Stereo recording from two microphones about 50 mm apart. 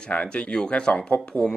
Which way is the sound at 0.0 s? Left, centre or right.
Left.